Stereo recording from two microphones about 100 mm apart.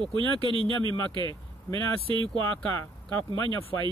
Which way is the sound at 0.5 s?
60° right (ahead or behind).